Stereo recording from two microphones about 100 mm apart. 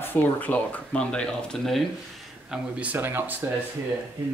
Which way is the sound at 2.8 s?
20° right (ahead or behind).